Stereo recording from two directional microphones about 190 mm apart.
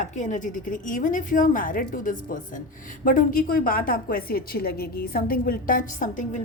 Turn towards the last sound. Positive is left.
turn(degrees=45)  # may be behind; listen again after turning